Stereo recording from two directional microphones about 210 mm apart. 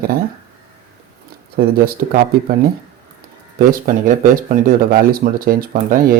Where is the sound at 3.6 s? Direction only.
40° right (ahead or behind).